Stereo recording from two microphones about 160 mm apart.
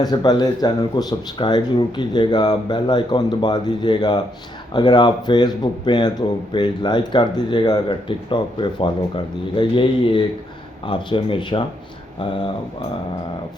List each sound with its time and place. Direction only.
0.0 s a man's voice: 25° left (ahead or behind)